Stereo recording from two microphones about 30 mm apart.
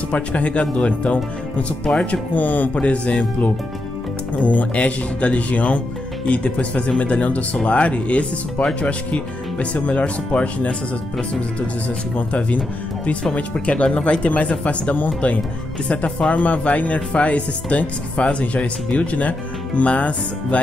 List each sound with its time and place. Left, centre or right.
0.1 s speech: left
1.9 s speech: left
2.3 s speech: left
2.7 s speech: left
4.4 s speech: left
6.2 s speech: left
12.3 s speech: left
14.2 s speech: left